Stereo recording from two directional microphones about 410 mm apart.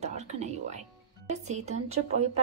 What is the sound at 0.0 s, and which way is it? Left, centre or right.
Speech, centre.